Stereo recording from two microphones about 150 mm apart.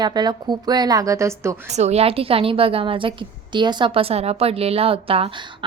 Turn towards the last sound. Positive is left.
turn(degrees=-40)  # may be behind; listen again after turning